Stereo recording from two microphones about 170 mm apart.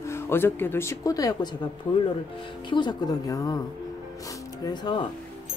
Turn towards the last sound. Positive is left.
turn(degrees=25)  # may be behind; listen again after turning